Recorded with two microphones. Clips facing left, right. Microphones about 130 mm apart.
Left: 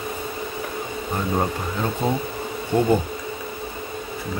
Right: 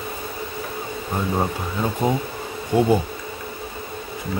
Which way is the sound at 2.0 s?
15° right (ahead or behind).